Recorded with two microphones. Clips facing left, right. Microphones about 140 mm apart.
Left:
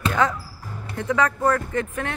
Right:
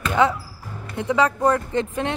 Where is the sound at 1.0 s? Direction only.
15° right (ahead or behind).